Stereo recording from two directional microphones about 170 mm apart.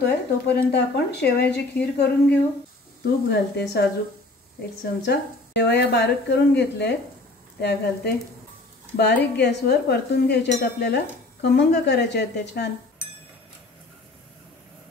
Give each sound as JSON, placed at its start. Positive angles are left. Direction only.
{"t": 0.0, "sound": "speech", "side_deg": 80}
{"t": 5.1, "sound": "a woman's voice", "side_deg": 75}